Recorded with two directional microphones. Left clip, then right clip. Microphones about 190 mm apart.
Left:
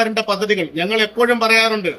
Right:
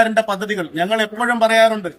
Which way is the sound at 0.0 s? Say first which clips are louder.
Right 2 dB; 20° right (ahead or behind).